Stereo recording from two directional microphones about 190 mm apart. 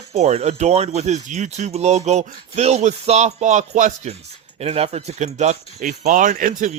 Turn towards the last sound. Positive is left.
turn(degrees=-45)  # may be behind; listen again after turning